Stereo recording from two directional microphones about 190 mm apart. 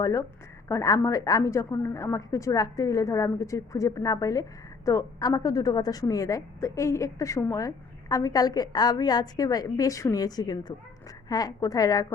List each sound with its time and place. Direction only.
0.0 s a woman's voice: 15° left (ahead or behind)